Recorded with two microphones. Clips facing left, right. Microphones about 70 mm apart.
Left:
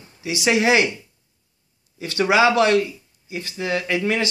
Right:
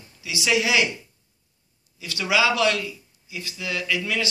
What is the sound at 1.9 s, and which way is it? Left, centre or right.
Speech, left.